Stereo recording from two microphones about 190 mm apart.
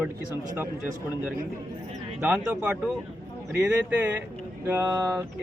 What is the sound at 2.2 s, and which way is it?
Speech, 5° right (ahead or behind).